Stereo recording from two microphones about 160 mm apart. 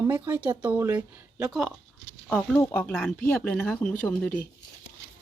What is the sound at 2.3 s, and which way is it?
Speech, 10° left (ahead or behind).